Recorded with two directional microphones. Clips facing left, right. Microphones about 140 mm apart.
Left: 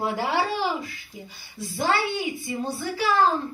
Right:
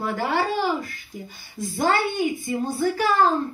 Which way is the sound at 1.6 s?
50° right (ahead or behind).